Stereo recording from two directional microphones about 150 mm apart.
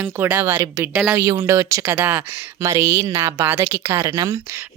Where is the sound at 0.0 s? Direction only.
15° right (ahead or behind).